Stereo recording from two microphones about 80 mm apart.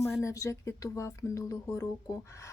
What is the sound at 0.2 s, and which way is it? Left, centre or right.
A woman's voice, left.